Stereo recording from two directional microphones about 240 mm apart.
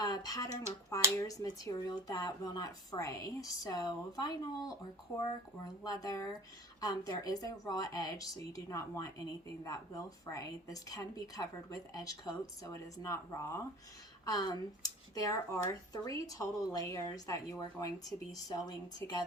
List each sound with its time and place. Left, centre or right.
0.0 s speech: centre